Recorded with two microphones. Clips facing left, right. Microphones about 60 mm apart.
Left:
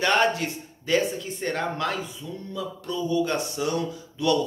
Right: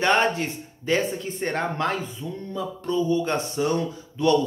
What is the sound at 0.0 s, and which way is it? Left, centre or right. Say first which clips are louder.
Speech: right 1 dB; right.